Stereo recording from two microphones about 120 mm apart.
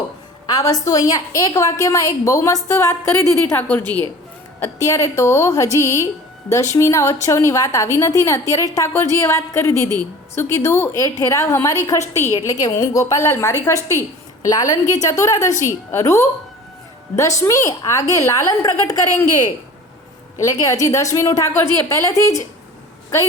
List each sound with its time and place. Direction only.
0.4 s a woman's voice: 35° left (ahead or behind); by 3.8 s 15° left (ahead or behind)
4.6 s a woman's voice: 25° left (ahead or behind)
20.4 s a woman's voice: 25° left (ahead or behind)